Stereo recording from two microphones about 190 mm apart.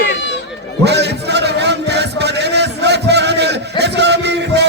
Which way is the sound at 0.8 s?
60° right (ahead or behind).